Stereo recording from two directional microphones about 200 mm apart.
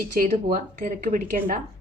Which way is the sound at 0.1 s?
45° right (ahead or behind).